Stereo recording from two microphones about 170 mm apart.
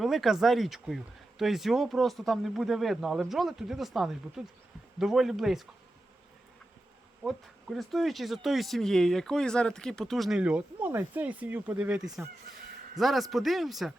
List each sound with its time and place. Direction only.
0.0 s speech: centre (ahead or behind)
7.3 s speech: centre (ahead or behind)